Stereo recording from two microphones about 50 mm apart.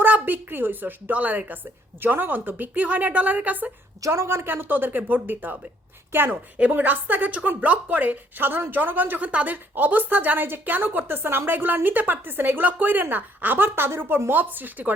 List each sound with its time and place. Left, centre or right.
0.0 s speech: right
2.0 s speech: right
4.0 s a woman's voice: right
4.4 s speech: right
6.1 s a woman's voice: right
6.6 s speech: right